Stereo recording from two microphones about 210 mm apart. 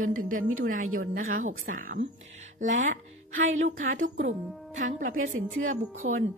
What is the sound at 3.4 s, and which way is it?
Speech, 70° right (ahead or behind).